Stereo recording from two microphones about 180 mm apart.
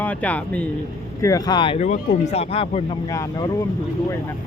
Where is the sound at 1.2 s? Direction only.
20° left (ahead or behind).